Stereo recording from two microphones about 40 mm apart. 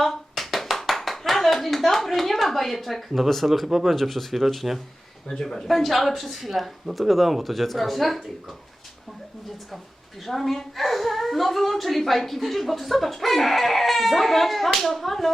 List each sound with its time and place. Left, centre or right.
0.0 s clapping: centre
3.9 s a woman's voice: centre
5.3 s speech: centre
5.6 s a woman's voice: centre
10.2 s a woman's voice: centre